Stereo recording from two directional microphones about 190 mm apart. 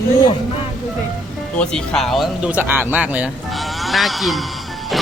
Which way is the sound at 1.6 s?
5° left (ahead or behind).